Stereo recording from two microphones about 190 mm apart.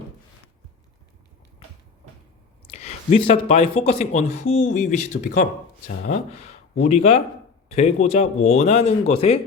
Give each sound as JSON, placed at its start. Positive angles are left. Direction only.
{"t": 2.7, "sound": "speech", "side_deg": 35}
{"t": 6.7, "sound": "speech", "side_deg": 35}